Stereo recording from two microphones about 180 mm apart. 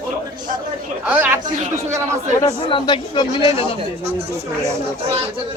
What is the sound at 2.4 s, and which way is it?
Speech, 25° left (ahead or behind).